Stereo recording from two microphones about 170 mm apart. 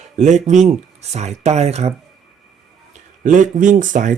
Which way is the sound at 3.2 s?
50° right (ahead or behind).